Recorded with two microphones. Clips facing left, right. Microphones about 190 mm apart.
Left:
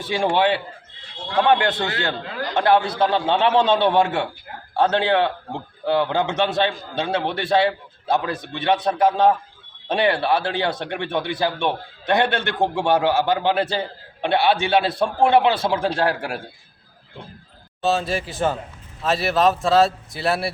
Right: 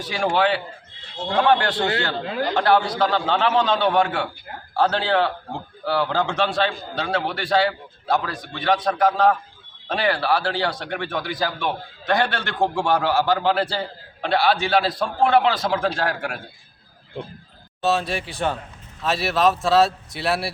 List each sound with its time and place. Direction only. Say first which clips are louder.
0.0 s a man's voice: left 2 dB; 25° left (ahead or behind)
2.2 s a man's voice: right 4 dB; 25° right (ahead or behind)
2.6 s a man's voice: left 2 dB; 20° left (ahead or behind)
17.8 s speech: left 1 dB; centre (ahead or behind)